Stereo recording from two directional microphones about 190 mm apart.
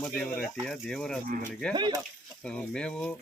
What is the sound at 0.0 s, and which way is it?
Speech, 5° left (ahead or behind).